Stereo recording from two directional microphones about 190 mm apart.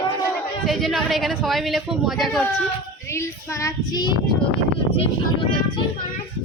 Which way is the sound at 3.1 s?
15° left (ahead or behind).